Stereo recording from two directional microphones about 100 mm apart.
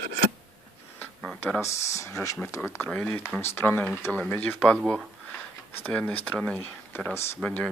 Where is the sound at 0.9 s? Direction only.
15° left (ahead or behind).